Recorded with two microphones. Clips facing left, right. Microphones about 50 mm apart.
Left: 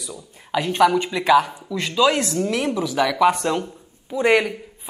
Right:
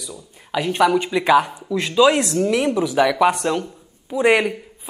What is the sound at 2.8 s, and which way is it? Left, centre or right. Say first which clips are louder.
Speech: right 3 dB; centre.